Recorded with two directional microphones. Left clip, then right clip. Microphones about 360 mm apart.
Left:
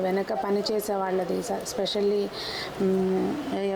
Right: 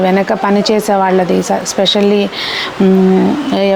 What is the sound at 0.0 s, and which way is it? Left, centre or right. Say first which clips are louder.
Speech: right 15 dB; right.